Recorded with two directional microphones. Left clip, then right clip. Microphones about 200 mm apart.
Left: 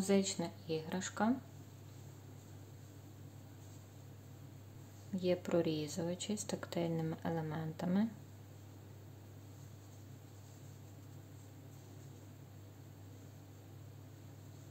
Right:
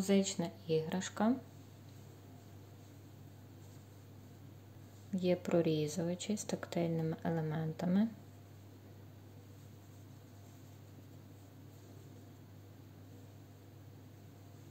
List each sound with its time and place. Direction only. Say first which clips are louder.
0.0 s speech: right 1 dB; 10° right (ahead or behind)
5.1 s speech: right 2 dB; 15° right (ahead or behind)